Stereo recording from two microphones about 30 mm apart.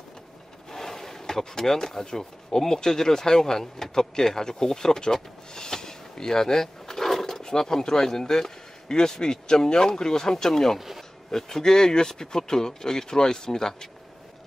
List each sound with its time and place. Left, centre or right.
0.7 s a sound: centre
2.6 s speech: centre
7.1 s roaring cats: centre
7.4 s speech: centre